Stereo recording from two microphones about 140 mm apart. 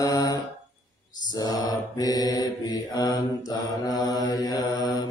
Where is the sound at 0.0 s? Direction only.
25° left (ahead or behind).